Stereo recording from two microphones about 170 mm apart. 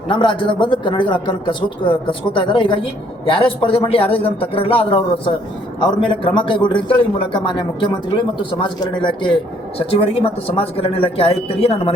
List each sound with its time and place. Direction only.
0.1 s a man's voice: 30° left (ahead or behind)